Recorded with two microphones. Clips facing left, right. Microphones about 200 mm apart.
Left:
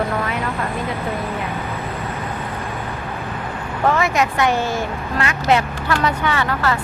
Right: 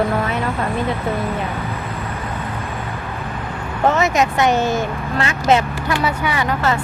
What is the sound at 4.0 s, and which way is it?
Speech, 20° right (ahead or behind).